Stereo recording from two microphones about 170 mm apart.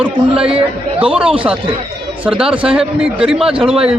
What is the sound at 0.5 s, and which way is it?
Speech, 35° right (ahead or behind).